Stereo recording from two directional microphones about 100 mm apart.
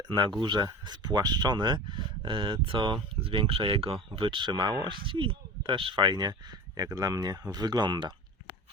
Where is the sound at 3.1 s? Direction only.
65° right (ahead or behind).